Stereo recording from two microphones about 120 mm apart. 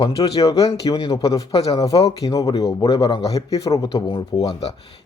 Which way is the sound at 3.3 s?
30° left (ahead or behind).